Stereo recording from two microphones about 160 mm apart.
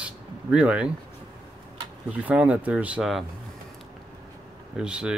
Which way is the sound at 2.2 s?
10° right (ahead or behind).